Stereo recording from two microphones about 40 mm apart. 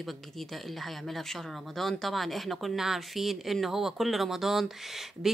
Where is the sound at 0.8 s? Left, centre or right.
Centre.